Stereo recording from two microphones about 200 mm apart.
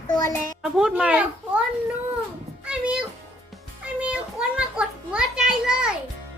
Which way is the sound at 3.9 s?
5° right (ahead or behind).